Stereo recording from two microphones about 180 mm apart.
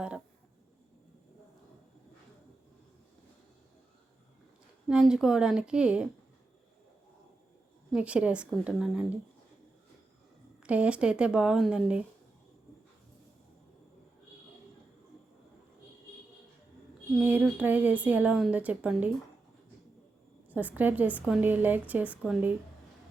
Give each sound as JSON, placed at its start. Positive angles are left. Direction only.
{"t": 4.9, "sound": "speech", "side_deg": -5}
{"t": 7.9, "sound": "a woman's voice", "side_deg": -5}
{"t": 10.6, "sound": "speech", "side_deg": -5}
{"t": 17.2, "sound": "a woman's voice", "side_deg": -10}
{"t": 20.5, "sound": "a woman's voice", "side_deg": -10}